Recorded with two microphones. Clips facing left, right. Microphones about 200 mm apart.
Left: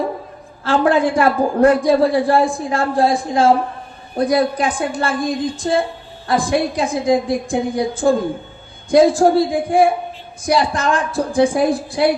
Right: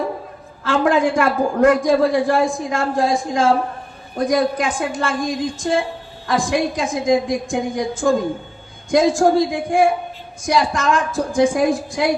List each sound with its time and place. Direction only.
0.6 s a man's voice: 35° left (ahead or behind)